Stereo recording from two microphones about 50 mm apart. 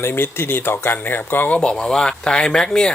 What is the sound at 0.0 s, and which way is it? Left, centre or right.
Speech, left.